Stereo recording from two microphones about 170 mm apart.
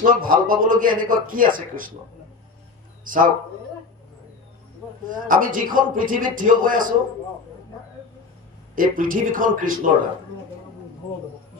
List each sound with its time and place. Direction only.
0.0 s a man's voice: 55° right (ahead or behind)
5.0 s a man's voice: 50° right (ahead or behind)
8.7 s a man's voice: 55° right (ahead or behind)